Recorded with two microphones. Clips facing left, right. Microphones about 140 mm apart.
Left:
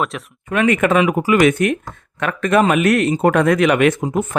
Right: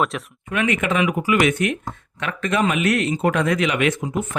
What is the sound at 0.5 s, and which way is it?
A man's voice, 45° left (ahead or behind).